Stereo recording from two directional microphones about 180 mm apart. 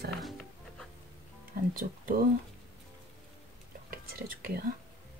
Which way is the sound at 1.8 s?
55° right (ahead or behind).